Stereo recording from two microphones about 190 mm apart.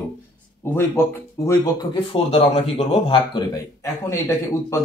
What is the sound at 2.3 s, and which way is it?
Speech, 35° left (ahead or behind).